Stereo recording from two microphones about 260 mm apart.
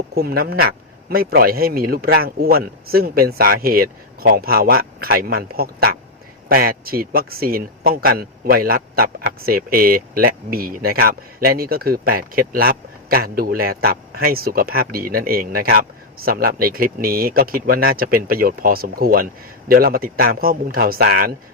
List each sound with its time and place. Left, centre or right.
0.1 s a man's voice: right